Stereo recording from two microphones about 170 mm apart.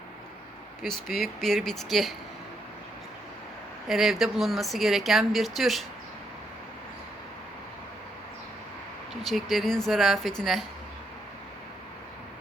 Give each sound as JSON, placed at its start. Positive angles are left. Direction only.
{"t": 0.8, "sound": "speech", "side_deg": 0}
{"t": 3.8, "sound": "speech", "side_deg": 0}
{"t": 9.2, "sound": "speech", "side_deg": 0}